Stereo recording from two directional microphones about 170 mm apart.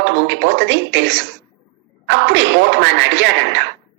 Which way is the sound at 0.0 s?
90° right.